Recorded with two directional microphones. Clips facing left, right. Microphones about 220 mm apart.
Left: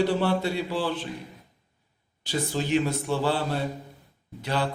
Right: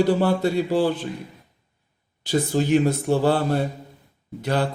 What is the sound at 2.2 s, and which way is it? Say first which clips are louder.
A man's voice: right 7 dB; 45° right (ahead or behind).